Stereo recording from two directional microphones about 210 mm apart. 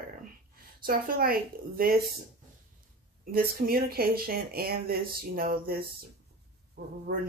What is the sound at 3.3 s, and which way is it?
Speech, 45° right (ahead or behind).